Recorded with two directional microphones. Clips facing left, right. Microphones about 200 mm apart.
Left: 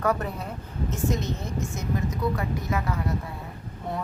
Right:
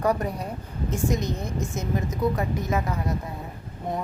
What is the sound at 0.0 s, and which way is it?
A woman's voice, 15° right (ahead or behind).